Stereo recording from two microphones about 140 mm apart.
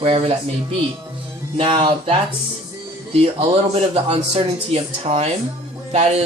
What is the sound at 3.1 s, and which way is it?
Speech, 45° right (ahead or behind).